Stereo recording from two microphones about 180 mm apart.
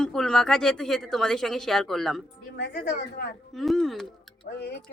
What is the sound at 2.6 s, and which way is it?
Speech, 65° left (ahead or behind).